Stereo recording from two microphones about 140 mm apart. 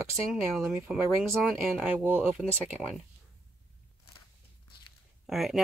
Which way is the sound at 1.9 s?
10° right (ahead or behind).